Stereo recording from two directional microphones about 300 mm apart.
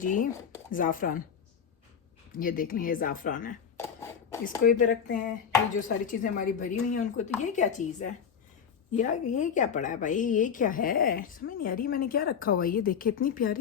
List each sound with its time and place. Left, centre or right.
0.0 s a woman's voice: left
2.3 s a woman's voice: left
3.8 s cough: centre
4.6 s a woman's voice: left